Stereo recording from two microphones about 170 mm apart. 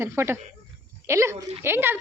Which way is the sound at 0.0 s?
15° right (ahead or behind).